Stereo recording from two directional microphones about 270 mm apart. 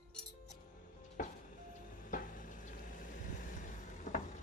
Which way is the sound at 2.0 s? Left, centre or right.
Left.